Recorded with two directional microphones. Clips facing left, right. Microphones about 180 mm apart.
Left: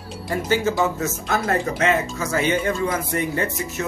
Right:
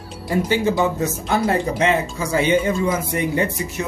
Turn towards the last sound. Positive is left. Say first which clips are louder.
# right 3 dB
turn(degrees=-15)  # may be behind; listen again after turning